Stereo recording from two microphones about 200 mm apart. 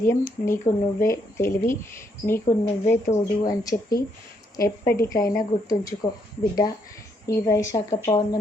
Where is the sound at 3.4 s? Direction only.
15° left (ahead or behind).